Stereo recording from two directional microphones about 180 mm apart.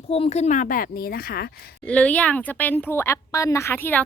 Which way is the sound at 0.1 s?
35° left (ahead or behind).